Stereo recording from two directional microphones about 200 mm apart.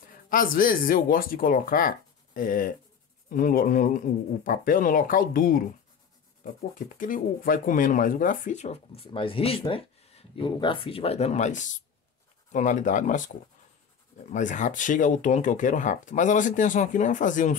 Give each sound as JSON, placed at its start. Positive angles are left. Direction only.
{"t": 0.3, "sound": "speech", "side_deg": 45}
{"t": 7.0, "sound": "speech", "side_deg": 45}
{"t": 14.3, "sound": "speech", "side_deg": 40}